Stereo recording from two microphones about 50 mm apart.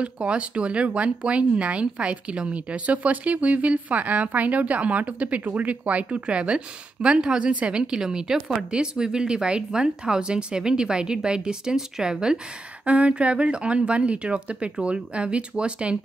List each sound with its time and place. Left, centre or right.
0.0 s speech: right
12.8 s speech: right